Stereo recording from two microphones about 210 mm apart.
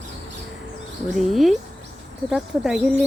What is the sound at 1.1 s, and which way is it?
Speech, centre (ahead or behind).